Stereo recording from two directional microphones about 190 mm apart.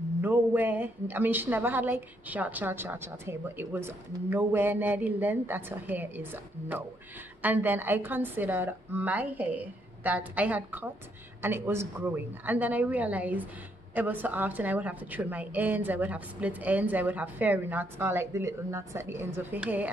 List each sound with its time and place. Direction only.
0.2 s a woman's voice: 10° right (ahead or behind)